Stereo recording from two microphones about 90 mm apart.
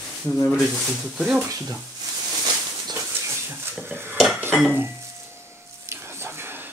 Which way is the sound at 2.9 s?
30° right (ahead or behind).